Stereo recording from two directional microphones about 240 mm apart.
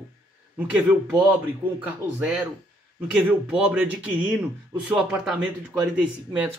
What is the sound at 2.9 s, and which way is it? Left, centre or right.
Speech, centre.